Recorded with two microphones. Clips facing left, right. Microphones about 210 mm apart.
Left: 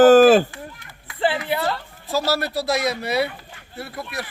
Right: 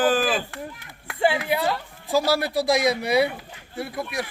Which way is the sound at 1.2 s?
15° right (ahead or behind).